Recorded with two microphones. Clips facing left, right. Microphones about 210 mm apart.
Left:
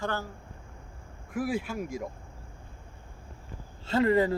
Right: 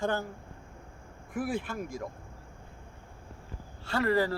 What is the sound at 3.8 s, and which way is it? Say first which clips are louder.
Speech: left 4 dB; 20° left (ahead or behind).